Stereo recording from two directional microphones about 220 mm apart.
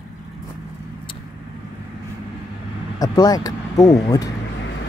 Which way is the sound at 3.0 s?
15° left (ahead or behind).